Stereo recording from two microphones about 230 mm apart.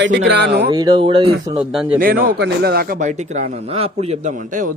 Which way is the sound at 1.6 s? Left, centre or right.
Centre.